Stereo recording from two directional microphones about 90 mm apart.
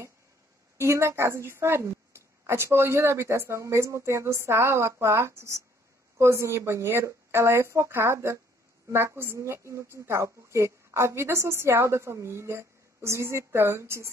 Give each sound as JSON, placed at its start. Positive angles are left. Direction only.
{"t": 0.7, "sound": "a woman's voice", "side_deg": -30}